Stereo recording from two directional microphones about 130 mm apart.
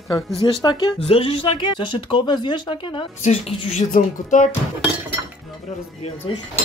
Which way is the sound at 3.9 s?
75° left (ahead or behind).